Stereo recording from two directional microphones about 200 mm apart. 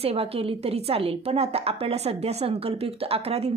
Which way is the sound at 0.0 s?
30° right (ahead or behind).